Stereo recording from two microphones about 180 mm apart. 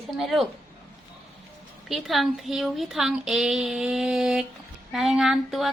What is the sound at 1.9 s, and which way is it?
A woman's voice, centre (ahead or behind).